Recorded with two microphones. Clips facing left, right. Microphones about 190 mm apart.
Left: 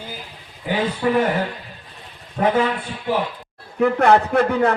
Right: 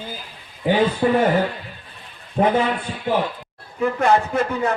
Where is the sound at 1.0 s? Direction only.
35° right (ahead or behind).